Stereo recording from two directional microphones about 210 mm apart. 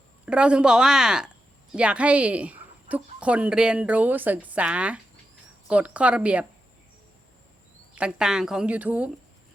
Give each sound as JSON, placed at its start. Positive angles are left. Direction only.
{"t": 0.3, "sound": "a woman's voice", "side_deg": -5}
{"t": 7.9, "sound": "a woman's voice", "side_deg": -5}